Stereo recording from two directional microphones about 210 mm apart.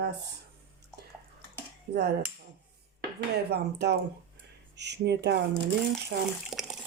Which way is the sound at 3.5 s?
55° right (ahead or behind).